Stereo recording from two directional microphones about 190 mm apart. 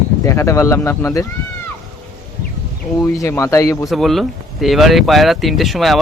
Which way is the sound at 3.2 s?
15° left (ahead or behind).